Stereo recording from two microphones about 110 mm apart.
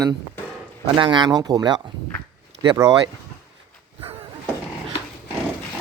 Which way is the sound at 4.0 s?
55° right (ahead or behind).